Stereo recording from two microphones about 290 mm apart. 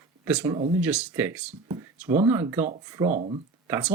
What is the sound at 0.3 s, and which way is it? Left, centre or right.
Speech, centre.